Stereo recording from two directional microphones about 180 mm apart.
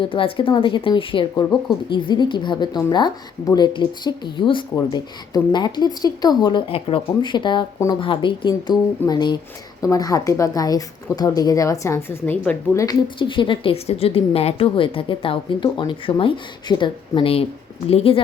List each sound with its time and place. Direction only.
0.0 s speech: 30° left (ahead or behind)